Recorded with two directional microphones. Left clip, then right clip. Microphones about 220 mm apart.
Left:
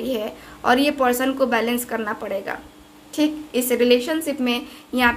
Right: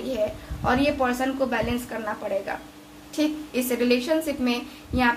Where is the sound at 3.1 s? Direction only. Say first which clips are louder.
Left 4 dB; 25° left (ahead or behind).